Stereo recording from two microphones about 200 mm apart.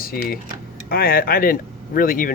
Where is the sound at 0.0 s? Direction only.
50° left (ahead or behind).